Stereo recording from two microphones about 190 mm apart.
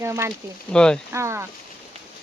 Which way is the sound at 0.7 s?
5° left (ahead or behind).